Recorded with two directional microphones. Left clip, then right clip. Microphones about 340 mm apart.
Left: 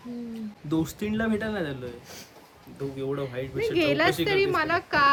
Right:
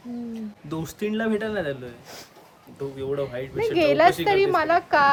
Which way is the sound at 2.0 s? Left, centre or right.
Centre.